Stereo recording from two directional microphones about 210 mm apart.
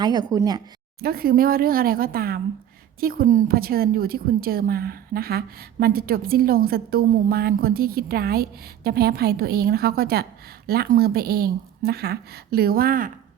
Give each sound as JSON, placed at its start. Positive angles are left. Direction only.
{"t": 0.0, "sound": "speech", "side_deg": -20}
{"t": 1.0, "sound": "a woman's voice", "side_deg": -45}